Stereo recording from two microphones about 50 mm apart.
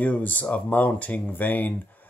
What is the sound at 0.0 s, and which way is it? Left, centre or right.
Speech, left.